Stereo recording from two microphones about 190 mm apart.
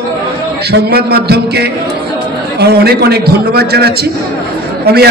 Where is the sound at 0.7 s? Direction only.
60° right (ahead or behind).